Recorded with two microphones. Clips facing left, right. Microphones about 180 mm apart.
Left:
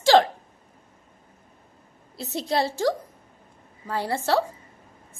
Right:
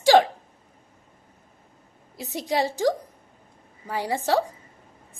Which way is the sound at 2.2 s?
15° right (ahead or behind).